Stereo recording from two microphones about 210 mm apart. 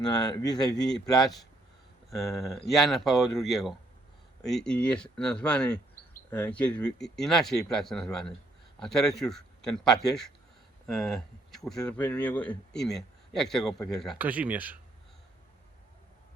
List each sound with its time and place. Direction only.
0.0 s speech: 20° left (ahead or behind)
2.0 s speech: centre (ahead or behind)